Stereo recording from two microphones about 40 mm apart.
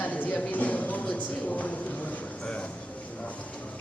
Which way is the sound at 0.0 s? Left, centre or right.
Left.